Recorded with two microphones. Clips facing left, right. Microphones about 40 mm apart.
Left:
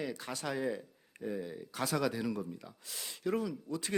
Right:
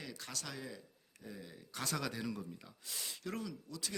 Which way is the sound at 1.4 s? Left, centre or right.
Centre.